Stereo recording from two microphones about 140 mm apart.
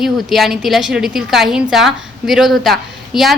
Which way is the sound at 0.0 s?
Centre (ahead or behind).